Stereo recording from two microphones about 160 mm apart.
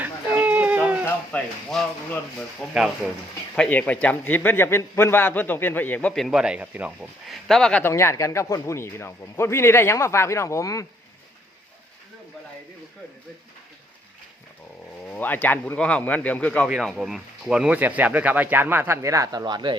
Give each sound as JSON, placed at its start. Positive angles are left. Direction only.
{"t": 0.0, "sound": "a sound", "side_deg": -10}
{"t": 1.0, "sound": "a sound", "side_deg": 5}
{"t": 2.6, "sound": "speech", "side_deg": 0}
{"t": 3.5, "sound": "a man's voice", "side_deg": 10}
{"t": 15.0, "sound": "a man's voice", "side_deg": 10}
{"t": 16.6, "sound": "speech", "side_deg": -5}